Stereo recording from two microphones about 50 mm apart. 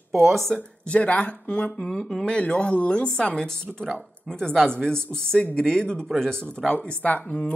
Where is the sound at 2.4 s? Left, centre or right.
Left.